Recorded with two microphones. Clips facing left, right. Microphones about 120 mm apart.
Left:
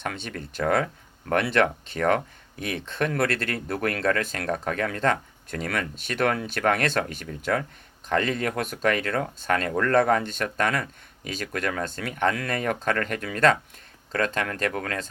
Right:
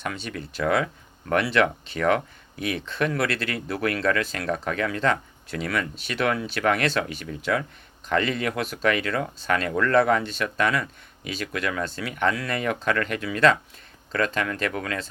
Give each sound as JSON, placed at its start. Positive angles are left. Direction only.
{"t": 0.0, "sound": "speech", "side_deg": 55}